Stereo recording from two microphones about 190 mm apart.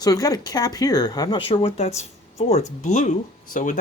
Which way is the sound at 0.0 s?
20° left (ahead or behind).